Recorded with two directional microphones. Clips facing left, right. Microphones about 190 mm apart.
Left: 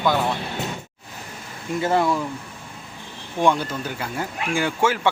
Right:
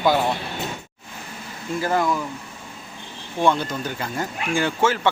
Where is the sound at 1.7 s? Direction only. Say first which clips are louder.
Left 2 dB; 25° left (ahead or behind).